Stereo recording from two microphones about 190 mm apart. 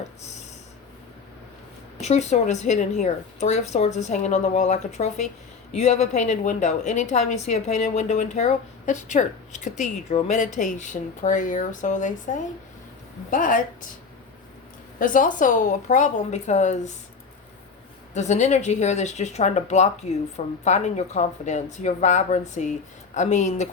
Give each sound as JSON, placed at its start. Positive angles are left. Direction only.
{"t": 2.0, "sound": "a woman's voice", "side_deg": 35}
{"t": 14.9, "sound": "a woman's voice", "side_deg": 45}
{"t": 18.1, "sound": "a woman's voice", "side_deg": 40}